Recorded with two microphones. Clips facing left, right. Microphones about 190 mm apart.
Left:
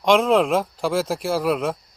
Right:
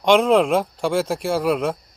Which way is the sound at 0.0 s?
Centre (ahead or behind).